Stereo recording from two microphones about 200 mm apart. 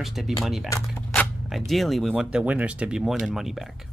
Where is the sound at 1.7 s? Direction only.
Centre (ahead or behind).